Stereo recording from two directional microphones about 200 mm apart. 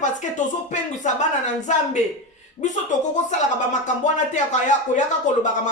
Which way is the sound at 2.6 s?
30° left (ahead or behind).